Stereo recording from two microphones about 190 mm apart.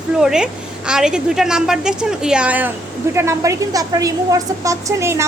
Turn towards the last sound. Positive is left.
turn(degrees=-15)  # may be behind; listen again after turning